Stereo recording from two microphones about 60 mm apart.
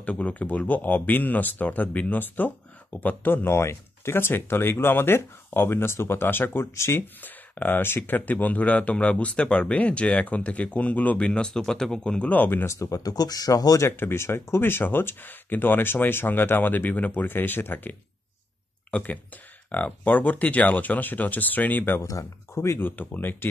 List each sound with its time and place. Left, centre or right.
0.0 s speech: left
12.3 s speech: left
12.6 s speech: left
13.7 s speech: left
18.9 s speech: left
22.0 s speech: left
22.8 s speech: left